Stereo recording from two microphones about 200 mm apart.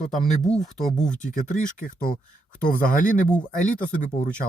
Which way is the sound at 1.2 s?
40° left (ahead or behind).